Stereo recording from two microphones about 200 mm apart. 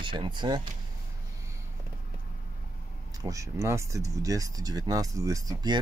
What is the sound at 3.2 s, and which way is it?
Speech, 15° right (ahead or behind).